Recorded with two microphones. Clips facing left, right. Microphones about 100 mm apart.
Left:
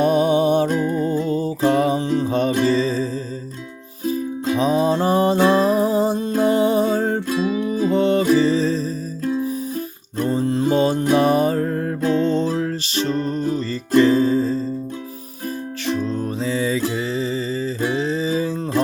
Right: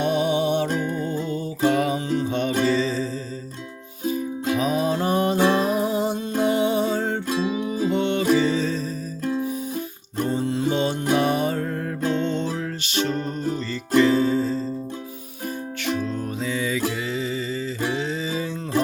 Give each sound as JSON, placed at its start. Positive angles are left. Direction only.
{"t": 0.0, "sound": "music", "side_deg": 40}
{"t": 7.3, "sound": "music", "side_deg": -20}
{"t": 7.9, "sound": "music", "side_deg": 35}
{"t": 10.2, "sound": "music", "side_deg": 40}
{"t": 16.0, "sound": "music", "side_deg": 35}